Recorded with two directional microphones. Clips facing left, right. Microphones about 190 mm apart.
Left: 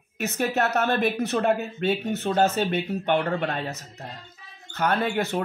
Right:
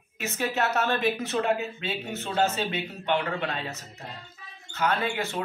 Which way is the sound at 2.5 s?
50° left (ahead or behind).